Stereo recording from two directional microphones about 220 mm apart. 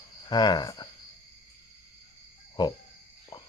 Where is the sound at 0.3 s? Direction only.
20° left (ahead or behind).